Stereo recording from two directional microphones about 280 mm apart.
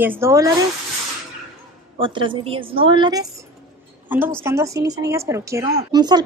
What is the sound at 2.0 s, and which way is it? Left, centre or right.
Speech, centre.